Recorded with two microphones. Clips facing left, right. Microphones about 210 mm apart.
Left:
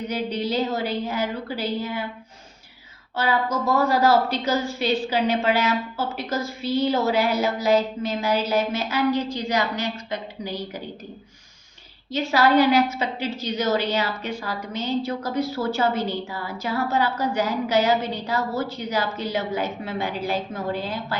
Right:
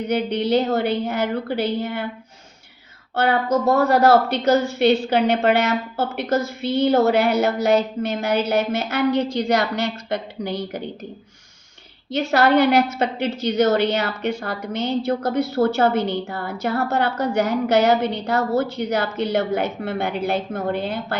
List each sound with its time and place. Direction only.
0.1 s a woman's voice: 65° right (ahead or behind)
3.2 s a woman's voice: 65° right (ahead or behind)
10.1 s a woman's voice: 65° right (ahead or behind)
12.1 s a woman's voice: 65° right (ahead or behind)